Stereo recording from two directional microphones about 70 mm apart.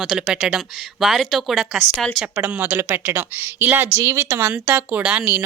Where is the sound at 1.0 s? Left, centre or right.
Centre.